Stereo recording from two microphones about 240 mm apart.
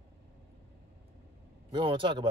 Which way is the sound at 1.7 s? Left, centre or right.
Right.